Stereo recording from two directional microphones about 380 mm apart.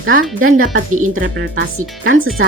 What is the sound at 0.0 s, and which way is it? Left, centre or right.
Speech, right.